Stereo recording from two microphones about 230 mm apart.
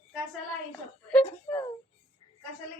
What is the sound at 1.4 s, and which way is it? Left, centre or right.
Speech, centre.